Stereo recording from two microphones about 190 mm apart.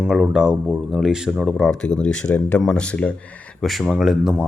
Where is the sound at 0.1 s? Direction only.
5° right (ahead or behind).